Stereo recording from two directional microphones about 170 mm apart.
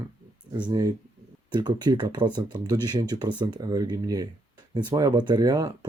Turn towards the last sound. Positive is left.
turn(degrees=-20)  # may be behind; listen again after turning